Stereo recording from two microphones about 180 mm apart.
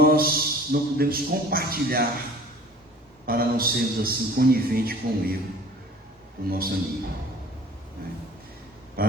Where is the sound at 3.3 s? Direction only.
55° right (ahead or behind).